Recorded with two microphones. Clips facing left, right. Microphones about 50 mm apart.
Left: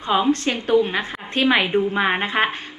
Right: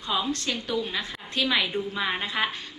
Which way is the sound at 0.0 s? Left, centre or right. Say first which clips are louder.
Left 9 dB; left.